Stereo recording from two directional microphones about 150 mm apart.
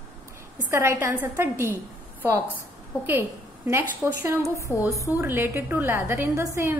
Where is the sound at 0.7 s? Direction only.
15° right (ahead or behind).